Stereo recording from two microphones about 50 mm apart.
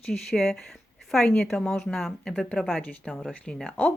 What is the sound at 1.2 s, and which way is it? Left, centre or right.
Speech, left.